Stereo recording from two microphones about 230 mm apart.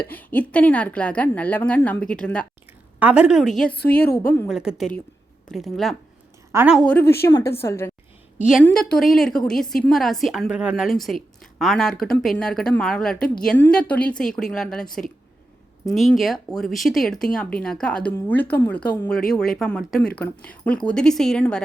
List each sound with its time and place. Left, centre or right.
0.1 s a woman's voice: centre
3.7 s a woman's voice: left
3.9 s a woman's voice: centre
6.5 s a woman's voice: centre
6.7 s a woman's voice: centre